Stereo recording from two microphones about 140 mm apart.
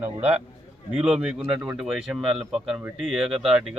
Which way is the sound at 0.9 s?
5° right (ahead or behind).